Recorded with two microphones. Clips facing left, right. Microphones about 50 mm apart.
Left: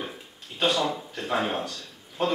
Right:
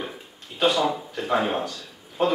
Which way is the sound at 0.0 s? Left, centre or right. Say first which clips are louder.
Right 2 dB; centre.